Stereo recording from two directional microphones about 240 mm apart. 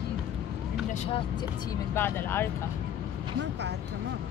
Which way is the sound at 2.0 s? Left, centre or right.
Centre.